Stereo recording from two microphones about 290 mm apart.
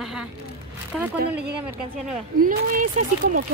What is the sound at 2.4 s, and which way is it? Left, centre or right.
Speech, right.